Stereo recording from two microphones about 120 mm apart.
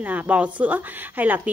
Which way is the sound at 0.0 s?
15° right (ahead or behind).